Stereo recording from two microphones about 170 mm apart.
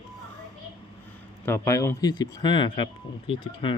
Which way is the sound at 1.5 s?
15° left (ahead or behind).